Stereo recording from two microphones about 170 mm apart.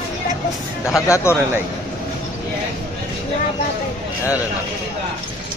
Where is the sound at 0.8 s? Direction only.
15° left (ahead or behind).